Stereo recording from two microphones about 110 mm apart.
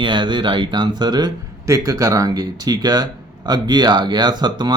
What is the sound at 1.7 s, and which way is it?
Speech, 30° right (ahead or behind).